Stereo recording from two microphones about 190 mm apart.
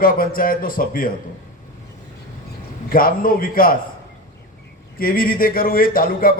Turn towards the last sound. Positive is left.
turn(degrees=50)  # may be behind; listen again after turning